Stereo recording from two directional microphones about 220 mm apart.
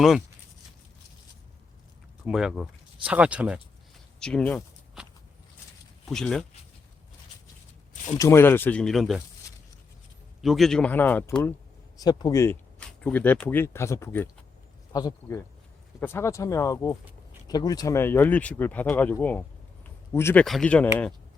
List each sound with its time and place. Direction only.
2.2 s speech: centre (ahead or behind)
6.1 s speech: 5° left (ahead or behind)
8.2 s speech: 10° left (ahead or behind)
10.4 s speech: centre (ahead or behind)